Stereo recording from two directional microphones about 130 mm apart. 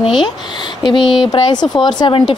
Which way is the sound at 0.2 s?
35° left (ahead or behind).